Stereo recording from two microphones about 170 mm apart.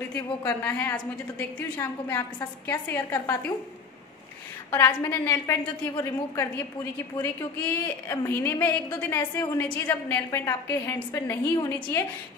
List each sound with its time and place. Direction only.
0.1 s a woman's voice: 10° left (ahead or behind)
4.6 s a woman's voice: 15° left (ahead or behind)